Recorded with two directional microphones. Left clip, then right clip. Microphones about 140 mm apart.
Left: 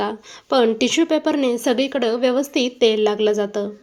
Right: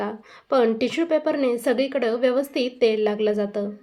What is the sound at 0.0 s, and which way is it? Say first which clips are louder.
A woman's voice: left 5 dB; 35° left (ahead or behind).